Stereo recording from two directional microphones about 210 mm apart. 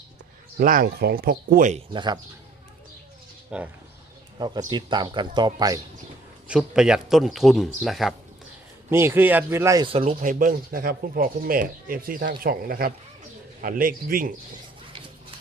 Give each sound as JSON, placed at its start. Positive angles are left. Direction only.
{"t": 0.6, "sound": "speech", "side_deg": -40}
{"t": 1.9, "sound": "speech", "side_deg": -20}
{"t": 3.5, "sound": "speech", "side_deg": -5}
{"t": 4.4, "sound": "speech", "side_deg": -20}
{"t": 6.5, "sound": "speech", "side_deg": -5}
{"t": 8.9, "sound": "speech", "side_deg": -10}